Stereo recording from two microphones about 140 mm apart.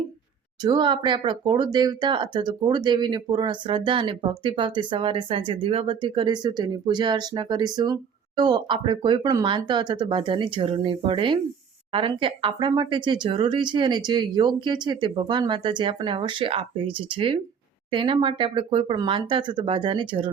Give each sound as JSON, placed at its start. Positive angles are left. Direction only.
{"t": 0.6, "sound": "speech", "side_deg": -30}